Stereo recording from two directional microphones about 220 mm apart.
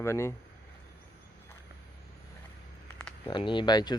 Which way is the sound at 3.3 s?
20° left (ahead or behind).